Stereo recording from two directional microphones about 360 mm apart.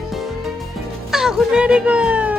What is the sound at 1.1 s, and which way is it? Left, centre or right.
A child's voice, centre.